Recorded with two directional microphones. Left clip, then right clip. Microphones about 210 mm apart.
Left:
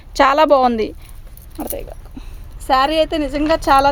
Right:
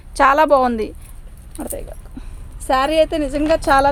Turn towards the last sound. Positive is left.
turn(degrees=30)  # may be behind; listen again after turning